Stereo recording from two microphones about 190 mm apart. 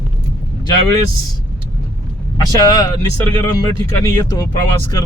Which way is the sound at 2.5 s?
20° left (ahead or behind).